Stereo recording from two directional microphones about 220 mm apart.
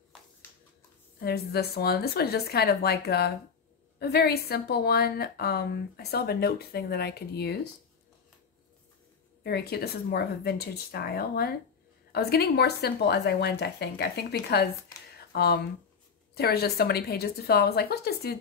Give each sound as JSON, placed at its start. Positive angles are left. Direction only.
{"t": 1.2, "sound": "a woman's voice", "side_deg": 45}
{"t": 9.4, "sound": "a woman's voice", "side_deg": 45}
{"t": 15.1, "sound": "a sound", "side_deg": 45}
{"t": 16.3, "sound": "a woman's voice", "side_deg": 45}